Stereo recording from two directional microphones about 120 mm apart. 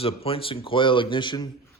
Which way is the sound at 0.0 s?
50° left (ahead or behind).